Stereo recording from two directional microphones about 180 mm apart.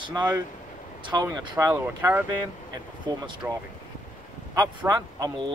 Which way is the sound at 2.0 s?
10° right (ahead or behind).